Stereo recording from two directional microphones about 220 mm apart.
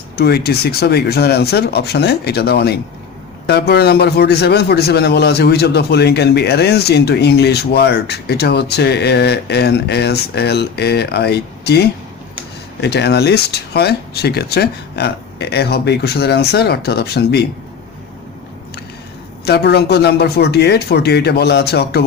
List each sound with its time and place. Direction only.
0.2 s a man's voice: 45° left (ahead or behind)
19.5 s a man's voice: 50° left (ahead or behind)